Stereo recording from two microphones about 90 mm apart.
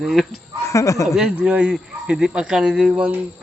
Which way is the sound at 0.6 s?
35° left (ahead or behind).